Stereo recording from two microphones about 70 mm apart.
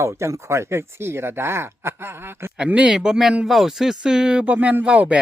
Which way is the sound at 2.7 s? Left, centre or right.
Centre.